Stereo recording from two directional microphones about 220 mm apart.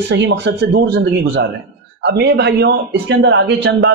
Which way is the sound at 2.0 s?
50° right (ahead or behind).